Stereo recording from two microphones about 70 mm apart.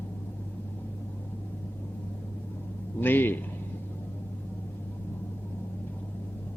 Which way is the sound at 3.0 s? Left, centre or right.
Left.